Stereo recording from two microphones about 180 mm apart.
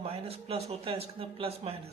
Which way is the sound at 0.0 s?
35° right (ahead or behind).